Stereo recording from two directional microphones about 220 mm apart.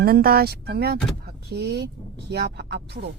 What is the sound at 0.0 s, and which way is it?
Speech, 45° right (ahead or behind).